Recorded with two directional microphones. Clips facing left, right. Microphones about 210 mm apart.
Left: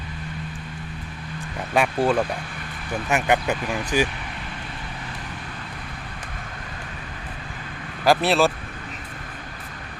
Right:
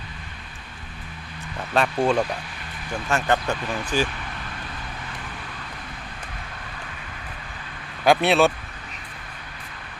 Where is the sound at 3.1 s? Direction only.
15° left (ahead or behind).